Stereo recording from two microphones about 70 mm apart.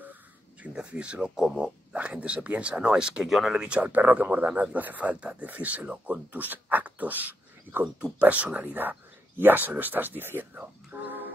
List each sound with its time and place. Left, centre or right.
0.6 s speech: centre
3.3 s speech: centre
3.6 s speech: centre